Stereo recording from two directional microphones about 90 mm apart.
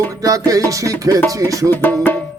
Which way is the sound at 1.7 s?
25° left (ahead or behind).